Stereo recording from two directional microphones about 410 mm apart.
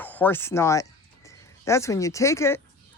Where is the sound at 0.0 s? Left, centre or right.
Centre.